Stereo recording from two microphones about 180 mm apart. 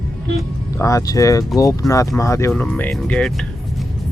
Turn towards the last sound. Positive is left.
turn(degrees=5)  # may be behind; listen again after turning